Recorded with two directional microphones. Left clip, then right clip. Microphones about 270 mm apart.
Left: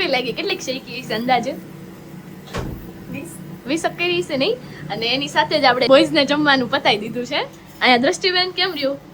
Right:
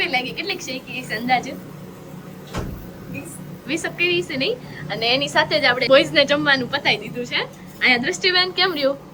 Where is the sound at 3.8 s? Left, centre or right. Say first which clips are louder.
Even; centre.